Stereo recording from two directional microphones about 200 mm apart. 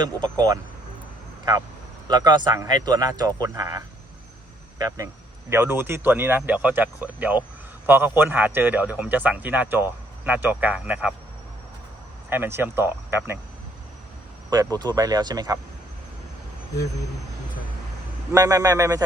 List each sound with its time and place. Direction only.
0.0 s speech: 20° right (ahead or behind)
2.0 s speech: 20° right (ahead or behind)
12.3 s speech: 10° right (ahead or behind)
14.5 s speech: 20° right (ahead or behind)
18.3 s speech: 15° right (ahead or behind)